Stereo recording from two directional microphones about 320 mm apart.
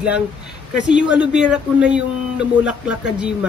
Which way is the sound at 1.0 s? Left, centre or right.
Centre.